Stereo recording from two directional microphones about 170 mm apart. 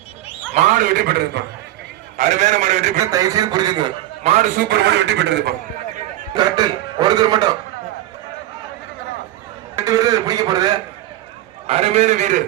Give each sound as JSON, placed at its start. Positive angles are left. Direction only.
{"t": 0.5, "sound": "a man's voice", "side_deg": -45}
{"t": 2.1, "sound": "a man's voice", "side_deg": -45}
{"t": 3.0, "sound": "a man's voice", "side_deg": -20}
{"t": 4.2, "sound": "a man's voice", "side_deg": -40}
{"t": 6.3, "sound": "a man's voice", "side_deg": -25}
{"t": 9.7, "sound": "a man's voice", "side_deg": -20}
{"t": 11.6, "sound": "a man's voice", "side_deg": -40}